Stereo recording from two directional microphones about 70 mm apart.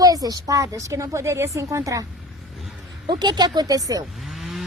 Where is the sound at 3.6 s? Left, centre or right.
Right.